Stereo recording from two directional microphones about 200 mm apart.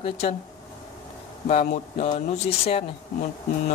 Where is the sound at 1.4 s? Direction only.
35° left (ahead or behind).